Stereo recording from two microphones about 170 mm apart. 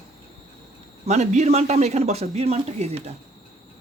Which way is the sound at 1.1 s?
40° right (ahead or behind).